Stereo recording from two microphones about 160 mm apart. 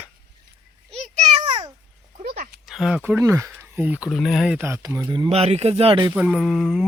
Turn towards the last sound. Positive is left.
turn(degrees=0)  # may be behind; listen again after turning